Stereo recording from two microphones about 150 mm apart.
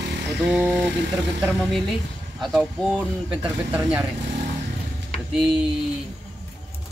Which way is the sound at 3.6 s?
10° right (ahead or behind).